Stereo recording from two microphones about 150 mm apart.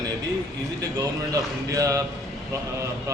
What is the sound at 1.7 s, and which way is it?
Speech, 20° right (ahead or behind).